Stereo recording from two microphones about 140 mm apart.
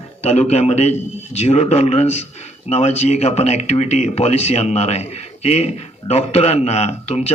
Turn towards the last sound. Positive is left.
turn(degrees=50)  # may be behind; listen again after turning